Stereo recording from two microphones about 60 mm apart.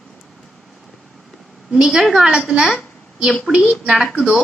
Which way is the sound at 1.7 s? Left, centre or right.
Centre.